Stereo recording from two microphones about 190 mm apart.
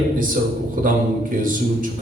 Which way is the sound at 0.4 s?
45° right (ahead or behind).